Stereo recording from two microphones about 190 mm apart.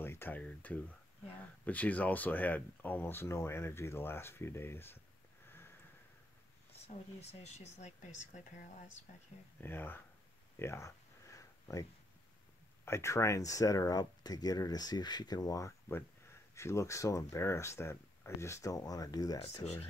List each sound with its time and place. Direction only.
0.0 s speech: 10° left (ahead or behind)
7.2 s speech: 35° left (ahead or behind)
9.6 s speech: 10° left (ahead or behind)
10.6 s a sound: 15° left (ahead or behind)
12.8 s speech: 15° left (ahead or behind)
19.6 s speech: 35° left (ahead or behind)